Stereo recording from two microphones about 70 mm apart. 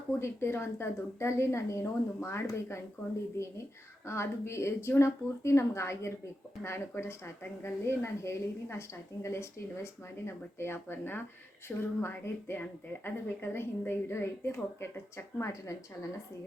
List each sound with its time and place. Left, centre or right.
0.2 s a woman's voice: left
4.0 s a woman's voice: left